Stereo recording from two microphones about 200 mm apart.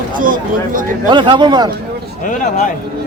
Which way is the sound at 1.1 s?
25° right (ahead or behind).